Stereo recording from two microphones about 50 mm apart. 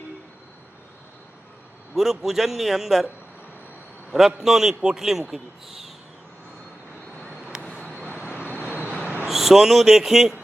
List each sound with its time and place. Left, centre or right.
2.0 s a man's voice: centre
4.1 s speech: centre
7.5 s vehicle: centre
7.9 s vehicle: left
9.2 s speech: centre